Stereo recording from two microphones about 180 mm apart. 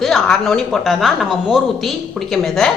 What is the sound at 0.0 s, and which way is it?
A woman's voice, centre (ahead or behind).